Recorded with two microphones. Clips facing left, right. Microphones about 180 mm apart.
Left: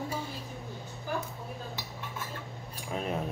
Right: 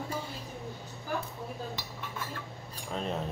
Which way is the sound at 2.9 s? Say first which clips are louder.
Left 1 dB; 10° left (ahead or behind).